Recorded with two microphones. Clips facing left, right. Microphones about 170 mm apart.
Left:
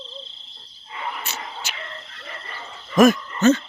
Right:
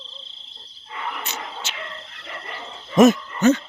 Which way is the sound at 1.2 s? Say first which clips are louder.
Right 1 dB; 20° right (ahead or behind).